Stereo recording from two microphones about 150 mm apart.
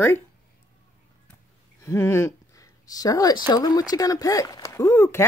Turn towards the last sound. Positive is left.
turn(degrees=20)  # may be behind; listen again after turning